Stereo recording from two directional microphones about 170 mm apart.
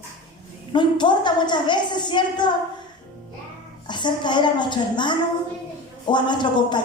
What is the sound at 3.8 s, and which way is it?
A woman's voice, 25° left (ahead or behind).